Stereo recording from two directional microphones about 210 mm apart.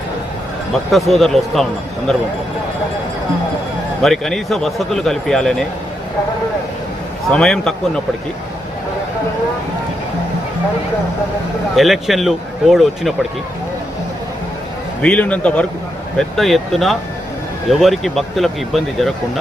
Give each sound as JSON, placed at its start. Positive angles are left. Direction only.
{"t": 0.9, "sound": "a man's voice", "side_deg": 0}
{"t": 4.0, "sound": "a man's voice", "side_deg": 0}
{"t": 7.3, "sound": "a man's voice", "side_deg": 5}
{"t": 11.8, "sound": "a man's voice", "side_deg": 0}
{"t": 15.0, "sound": "a man's voice", "side_deg": 5}